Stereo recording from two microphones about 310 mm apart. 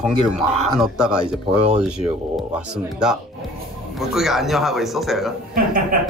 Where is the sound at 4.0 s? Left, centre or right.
Centre.